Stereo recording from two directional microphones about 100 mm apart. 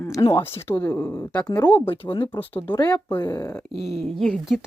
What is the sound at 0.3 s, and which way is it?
Speech, 25° left (ahead or behind).